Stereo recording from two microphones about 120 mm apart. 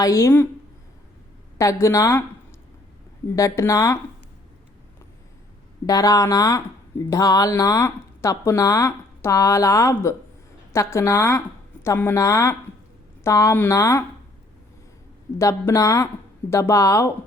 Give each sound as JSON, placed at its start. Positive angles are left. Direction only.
{"t": 0.0, "sound": "speech", "side_deg": 25}
{"t": 1.5, "sound": "speech", "side_deg": 25}
{"t": 3.3, "sound": "speech", "side_deg": 25}
{"t": 5.8, "sound": "a woman's voice", "side_deg": 30}
{"t": 13.5, "sound": "speech", "side_deg": 20}
{"t": 15.4, "sound": "speech", "side_deg": 25}